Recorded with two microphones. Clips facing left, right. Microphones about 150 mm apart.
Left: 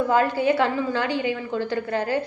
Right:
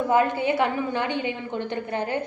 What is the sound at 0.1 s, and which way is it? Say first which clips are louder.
A woman's voice: right 1 dB; 20° right (ahead or behind).